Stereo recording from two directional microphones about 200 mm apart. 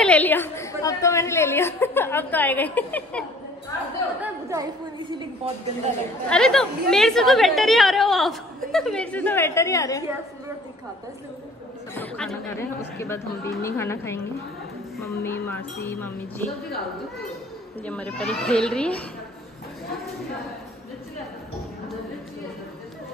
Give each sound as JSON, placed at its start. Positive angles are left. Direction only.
{"t": 0.0, "sound": "a woman's voice", "side_deg": 10}
{"t": 4.2, "sound": "a woman's voice", "side_deg": -15}
{"t": 6.2, "sound": "a woman's voice", "side_deg": 5}
{"t": 11.9, "sound": "a woman's voice", "side_deg": 5}
{"t": 17.8, "sound": "a woman's voice", "side_deg": 5}